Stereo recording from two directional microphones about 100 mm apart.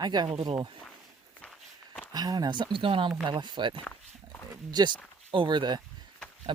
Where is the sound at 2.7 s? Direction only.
60° right (ahead or behind).